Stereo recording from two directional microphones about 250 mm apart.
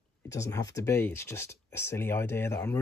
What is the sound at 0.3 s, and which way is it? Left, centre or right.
Speech, centre.